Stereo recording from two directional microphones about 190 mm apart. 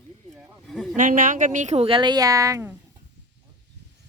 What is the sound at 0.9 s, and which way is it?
A woman's voice, 45° right (ahead or behind).